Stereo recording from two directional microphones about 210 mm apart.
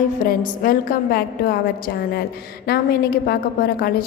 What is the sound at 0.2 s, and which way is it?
A woman's voice, 45° left (ahead or behind).